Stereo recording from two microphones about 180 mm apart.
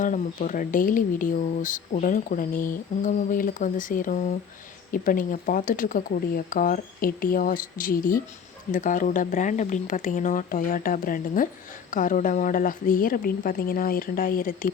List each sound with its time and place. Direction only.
0.0 s speech: 45° left (ahead or behind)